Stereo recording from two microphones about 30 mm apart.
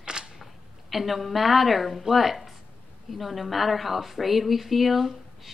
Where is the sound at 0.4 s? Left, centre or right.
Centre.